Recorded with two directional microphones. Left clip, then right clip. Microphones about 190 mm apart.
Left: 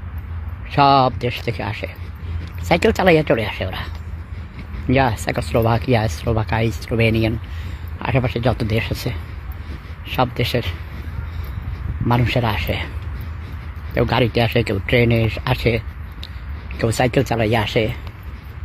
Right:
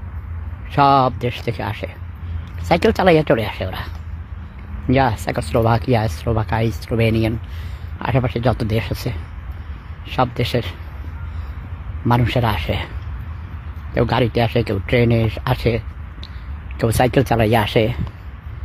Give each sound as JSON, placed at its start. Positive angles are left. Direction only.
{"t": 0.7, "sound": "speech", "side_deg": -10}
{"t": 12.1, "sound": "speech", "side_deg": -15}
{"t": 13.9, "sound": "speech", "side_deg": -10}